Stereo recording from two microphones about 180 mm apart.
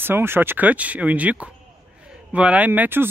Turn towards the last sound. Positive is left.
turn(degrees=-10)  # may be behind; listen again after turning